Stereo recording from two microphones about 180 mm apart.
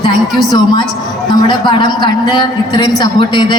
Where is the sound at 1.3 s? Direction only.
25° left (ahead or behind).